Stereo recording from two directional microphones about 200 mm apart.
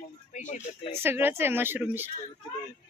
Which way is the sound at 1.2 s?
10° right (ahead or behind).